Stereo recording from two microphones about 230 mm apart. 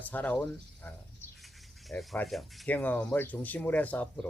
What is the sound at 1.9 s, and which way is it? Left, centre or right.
Speech, centre.